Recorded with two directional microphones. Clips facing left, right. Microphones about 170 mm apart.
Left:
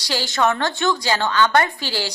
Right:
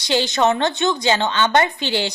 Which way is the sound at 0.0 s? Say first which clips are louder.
Right 3 dB; 20° right (ahead or behind).